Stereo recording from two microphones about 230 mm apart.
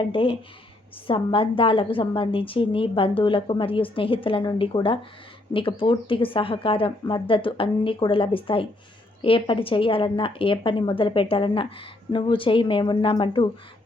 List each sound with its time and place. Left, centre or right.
0.0 s a woman's voice: left